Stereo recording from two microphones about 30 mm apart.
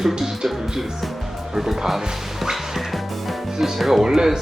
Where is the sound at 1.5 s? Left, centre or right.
Centre.